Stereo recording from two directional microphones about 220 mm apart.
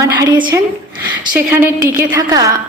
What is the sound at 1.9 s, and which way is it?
Speech, 15° right (ahead or behind).